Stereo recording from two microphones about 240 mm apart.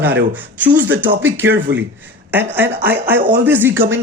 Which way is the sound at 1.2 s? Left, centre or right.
Centre.